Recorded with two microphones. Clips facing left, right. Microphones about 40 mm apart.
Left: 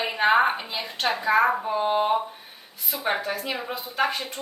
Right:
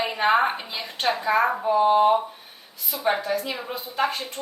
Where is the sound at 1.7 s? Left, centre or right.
Centre.